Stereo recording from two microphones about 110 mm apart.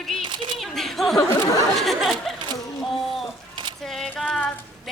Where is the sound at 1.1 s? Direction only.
35° left (ahead or behind).